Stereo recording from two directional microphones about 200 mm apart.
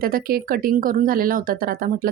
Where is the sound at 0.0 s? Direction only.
45° right (ahead or behind).